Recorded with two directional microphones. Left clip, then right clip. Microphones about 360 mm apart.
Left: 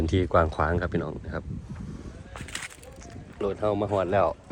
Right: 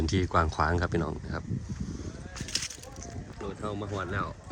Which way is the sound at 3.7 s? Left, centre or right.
Left.